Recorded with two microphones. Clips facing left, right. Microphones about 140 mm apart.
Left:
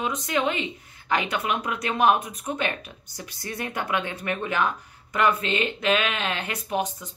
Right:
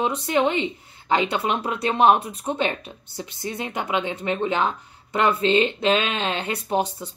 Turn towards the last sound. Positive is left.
turn(degrees=-30)  # may be behind; listen again after turning